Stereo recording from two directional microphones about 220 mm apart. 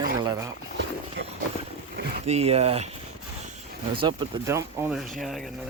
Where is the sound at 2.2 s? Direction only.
30° right (ahead or behind).